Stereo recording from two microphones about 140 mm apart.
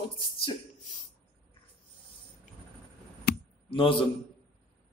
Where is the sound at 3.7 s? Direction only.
40° left (ahead or behind).